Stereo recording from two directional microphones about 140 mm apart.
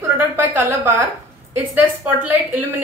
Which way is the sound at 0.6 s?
15° right (ahead or behind).